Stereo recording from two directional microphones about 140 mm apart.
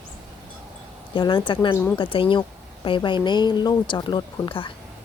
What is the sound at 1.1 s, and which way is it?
Speech, 35° left (ahead or behind).